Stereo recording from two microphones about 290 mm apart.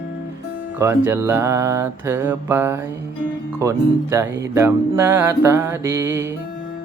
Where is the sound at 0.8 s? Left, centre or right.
Centre.